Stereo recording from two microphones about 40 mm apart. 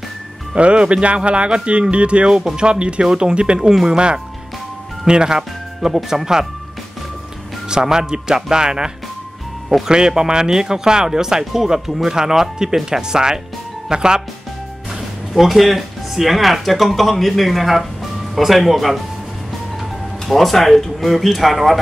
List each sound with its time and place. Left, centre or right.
0.6 s speech: right
5.0 s speech: right
7.6 s speech: centre
15.0 s speech: centre